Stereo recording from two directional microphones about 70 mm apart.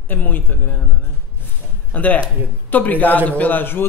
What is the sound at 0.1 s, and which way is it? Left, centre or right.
Speech, left.